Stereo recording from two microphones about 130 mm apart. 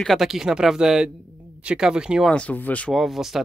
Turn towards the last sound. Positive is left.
turn(degrees=0)  # may be behind; listen again after turning